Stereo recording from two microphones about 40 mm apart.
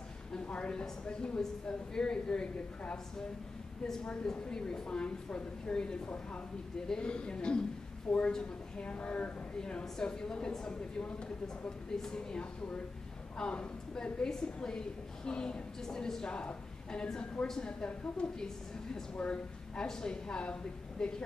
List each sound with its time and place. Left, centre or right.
0.5 s a woman's voice: left
4.0 s a woman's voice: left
6.0 s a woman's voice: left
8.8 s a woman's voice: left; by 12.4 s centre
13.4 s a woman's voice: left